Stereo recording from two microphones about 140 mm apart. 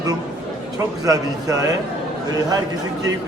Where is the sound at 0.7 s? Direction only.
25° right (ahead or behind).